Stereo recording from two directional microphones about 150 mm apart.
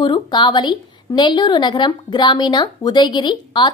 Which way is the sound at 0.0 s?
30° left (ahead or behind).